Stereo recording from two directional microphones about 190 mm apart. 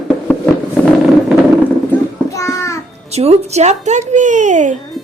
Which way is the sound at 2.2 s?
15° left (ahead or behind).